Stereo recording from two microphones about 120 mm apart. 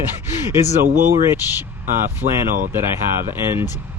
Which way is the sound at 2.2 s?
90° right.